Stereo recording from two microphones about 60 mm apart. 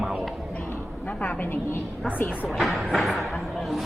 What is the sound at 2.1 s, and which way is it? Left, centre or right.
Speech, left.